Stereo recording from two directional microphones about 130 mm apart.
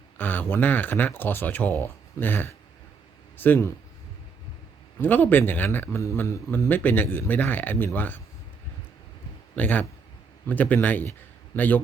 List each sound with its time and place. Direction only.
0.2 s a man's voice: 15° left (ahead or behind)
4.9 s a man's voice: 15° left (ahead or behind)
9.6 s a man's voice: 10° left (ahead or behind)